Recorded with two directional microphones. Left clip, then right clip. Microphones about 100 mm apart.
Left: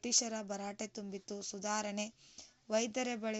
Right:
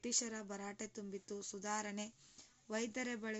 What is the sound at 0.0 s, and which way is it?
A woman's voice, 20° left (ahead or behind).